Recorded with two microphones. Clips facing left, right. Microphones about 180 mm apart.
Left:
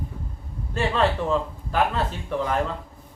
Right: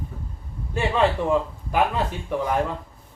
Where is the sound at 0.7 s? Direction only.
15° right (ahead or behind).